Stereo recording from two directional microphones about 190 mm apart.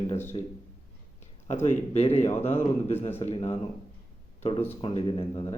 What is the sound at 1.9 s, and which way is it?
Speech, 35° left (ahead or behind).